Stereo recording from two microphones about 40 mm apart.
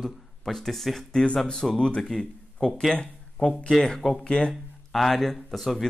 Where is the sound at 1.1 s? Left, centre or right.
Left.